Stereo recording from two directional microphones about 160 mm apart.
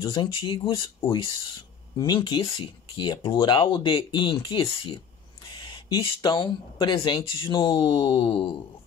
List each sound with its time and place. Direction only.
0.0 s speech: 30° left (ahead or behind)